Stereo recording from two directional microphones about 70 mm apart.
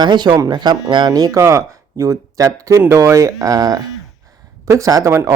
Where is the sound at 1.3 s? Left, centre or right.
Right.